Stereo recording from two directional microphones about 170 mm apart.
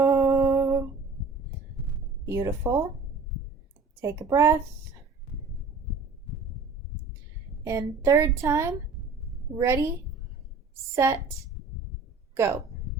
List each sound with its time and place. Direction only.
0.0 s a sound: 15° right (ahead or behind)
2.2 s speech: 20° right (ahead or behind)
4.0 s a woman's voice: 20° right (ahead or behind)
7.6 s a woman's voice: 20° right (ahead or behind)
10.9 s a woman's voice: 15° right (ahead or behind)
12.3 s speech: 15° right (ahead or behind)